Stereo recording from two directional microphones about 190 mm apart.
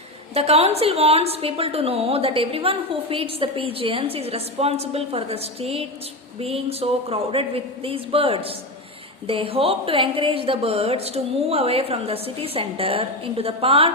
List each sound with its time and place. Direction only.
0.3 s a woman's voice: 30° right (ahead or behind)